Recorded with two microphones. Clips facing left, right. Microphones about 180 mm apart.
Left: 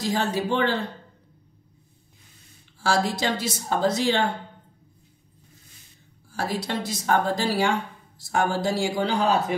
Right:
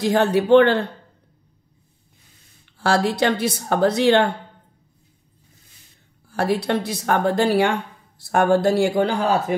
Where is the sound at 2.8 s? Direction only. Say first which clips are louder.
Right 5 dB; 65° right (ahead or behind).